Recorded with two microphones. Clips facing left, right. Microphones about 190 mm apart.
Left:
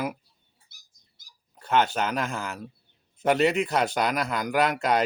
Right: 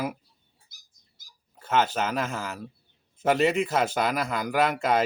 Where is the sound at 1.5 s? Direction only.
5° right (ahead or behind).